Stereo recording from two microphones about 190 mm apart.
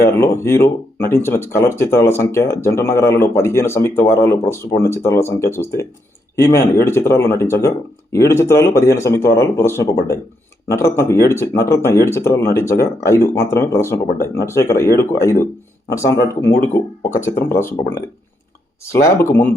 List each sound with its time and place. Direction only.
0.2 s speech: 15° left (ahead or behind)
19.0 s speech: 10° left (ahead or behind)